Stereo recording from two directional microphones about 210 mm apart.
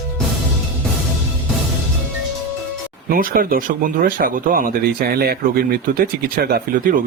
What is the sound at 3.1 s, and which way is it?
Speech, 45° right (ahead or behind).